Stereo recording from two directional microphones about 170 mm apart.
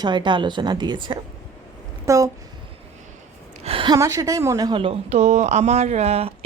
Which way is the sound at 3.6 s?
35° right (ahead or behind).